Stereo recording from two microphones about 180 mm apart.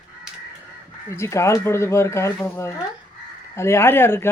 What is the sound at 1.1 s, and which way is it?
Speech, 15° left (ahead or behind).